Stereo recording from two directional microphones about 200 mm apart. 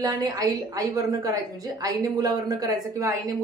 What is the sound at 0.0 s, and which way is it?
A woman's voice, 15° right (ahead or behind).